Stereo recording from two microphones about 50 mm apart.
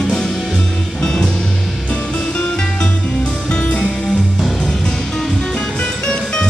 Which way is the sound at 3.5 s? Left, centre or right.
Centre.